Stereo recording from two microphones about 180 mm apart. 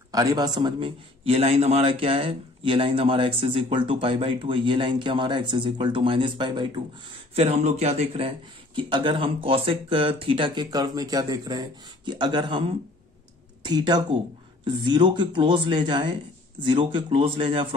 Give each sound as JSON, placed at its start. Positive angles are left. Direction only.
{"t": 0.1, "sound": "a man's voice", "side_deg": -20}
{"t": 7.3, "sound": "a man's voice", "side_deg": -40}